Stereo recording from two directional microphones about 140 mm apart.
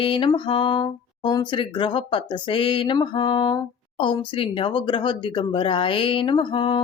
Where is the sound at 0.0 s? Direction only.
35° left (ahead or behind).